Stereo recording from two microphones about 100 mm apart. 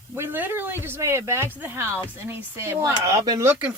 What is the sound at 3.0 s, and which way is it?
Speech, 35° right (ahead or behind).